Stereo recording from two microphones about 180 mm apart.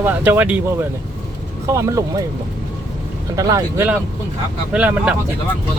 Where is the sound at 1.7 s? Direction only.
20° right (ahead or behind).